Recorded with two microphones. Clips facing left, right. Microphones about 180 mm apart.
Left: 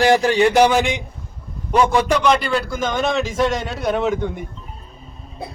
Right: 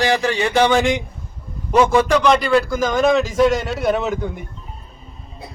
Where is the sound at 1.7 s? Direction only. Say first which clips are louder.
Right 2 dB; centre (ahead or behind).